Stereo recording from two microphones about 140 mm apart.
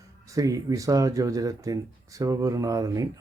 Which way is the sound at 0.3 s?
25° right (ahead or behind).